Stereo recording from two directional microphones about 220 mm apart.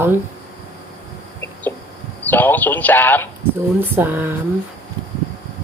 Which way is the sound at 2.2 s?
10° left (ahead or behind).